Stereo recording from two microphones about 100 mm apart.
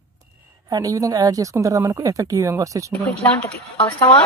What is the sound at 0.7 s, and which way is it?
Speech, 40° right (ahead or behind).